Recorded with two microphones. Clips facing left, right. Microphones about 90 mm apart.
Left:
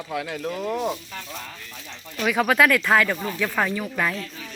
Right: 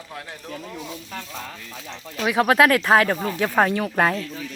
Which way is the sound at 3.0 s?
35° right (ahead or behind).